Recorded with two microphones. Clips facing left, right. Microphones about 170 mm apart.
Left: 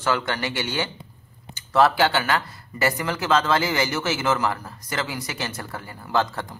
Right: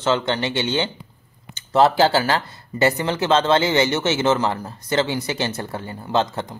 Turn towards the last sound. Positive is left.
turn(degrees=-25)  # may be behind; listen again after turning